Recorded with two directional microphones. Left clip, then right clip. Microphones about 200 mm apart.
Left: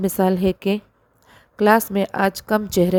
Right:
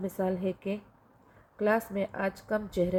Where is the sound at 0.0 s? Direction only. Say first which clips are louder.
Left 12 dB; 55° left (ahead or behind).